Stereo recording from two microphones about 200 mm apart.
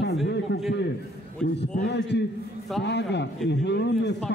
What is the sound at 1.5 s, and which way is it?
A man's voice, 60° left (ahead or behind).